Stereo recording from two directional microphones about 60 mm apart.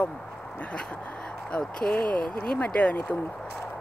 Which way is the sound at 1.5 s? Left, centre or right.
Centre.